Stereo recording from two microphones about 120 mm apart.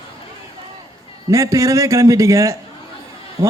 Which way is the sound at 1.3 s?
25° right (ahead or behind).